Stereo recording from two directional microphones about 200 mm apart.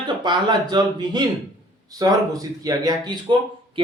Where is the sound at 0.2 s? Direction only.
20° right (ahead or behind).